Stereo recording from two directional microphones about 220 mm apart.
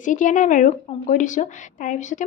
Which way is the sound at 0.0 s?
35° left (ahead or behind).